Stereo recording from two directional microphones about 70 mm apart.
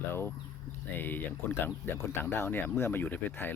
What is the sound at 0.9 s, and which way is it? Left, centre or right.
Speech, left.